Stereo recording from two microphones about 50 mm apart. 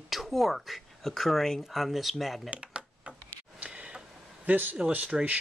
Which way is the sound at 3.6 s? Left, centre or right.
Centre.